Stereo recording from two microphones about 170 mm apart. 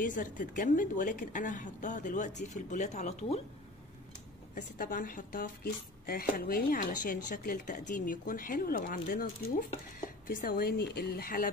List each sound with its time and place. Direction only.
0.0 s a woman's voice: 50° left (ahead or behind)
4.6 s speech: 55° left (ahead or behind)